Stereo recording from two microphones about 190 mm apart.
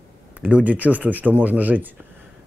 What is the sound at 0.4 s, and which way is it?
Speech, 5° right (ahead or behind).